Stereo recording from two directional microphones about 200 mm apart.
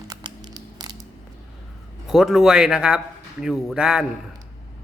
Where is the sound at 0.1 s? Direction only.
20° right (ahead or behind).